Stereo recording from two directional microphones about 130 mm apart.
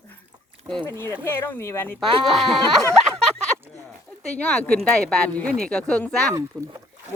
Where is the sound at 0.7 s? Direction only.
15° right (ahead or behind).